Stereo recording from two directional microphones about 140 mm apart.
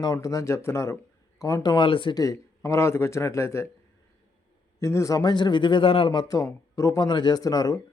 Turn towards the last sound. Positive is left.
turn(degrees=25)  # may be behind; listen again after turning